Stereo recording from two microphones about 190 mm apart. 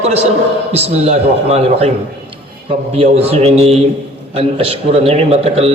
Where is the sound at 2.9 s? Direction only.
30° right (ahead or behind).